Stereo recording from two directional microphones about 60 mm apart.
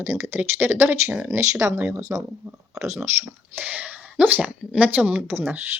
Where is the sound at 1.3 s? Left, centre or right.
Right.